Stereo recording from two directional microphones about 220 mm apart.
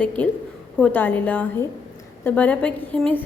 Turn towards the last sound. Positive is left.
turn(degrees=5)  # may be behind; listen again after turning